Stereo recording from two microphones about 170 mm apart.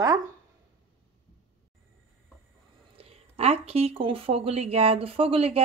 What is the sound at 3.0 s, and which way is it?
Speech, 35° right (ahead or behind).